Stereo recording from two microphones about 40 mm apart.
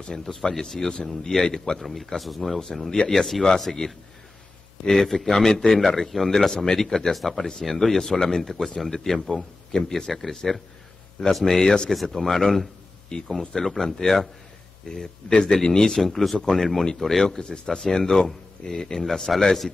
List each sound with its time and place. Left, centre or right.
0.1 s speech: centre
11.6 s speech: centre
11.9 s speech: centre
14.8 s speech: centre